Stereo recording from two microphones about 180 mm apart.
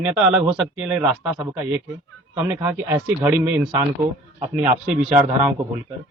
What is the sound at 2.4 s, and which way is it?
Speech, 10° right (ahead or behind).